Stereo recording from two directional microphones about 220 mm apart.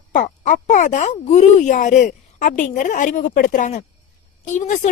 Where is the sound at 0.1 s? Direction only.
35° left (ahead or behind).